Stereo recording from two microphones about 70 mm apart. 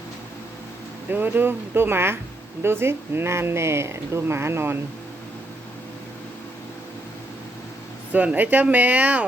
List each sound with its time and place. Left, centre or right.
1.1 s speech: right
8.1 s speech: right